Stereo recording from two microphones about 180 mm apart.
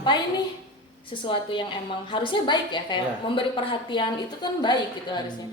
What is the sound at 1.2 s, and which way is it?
A woman's voice, 30° left (ahead or behind).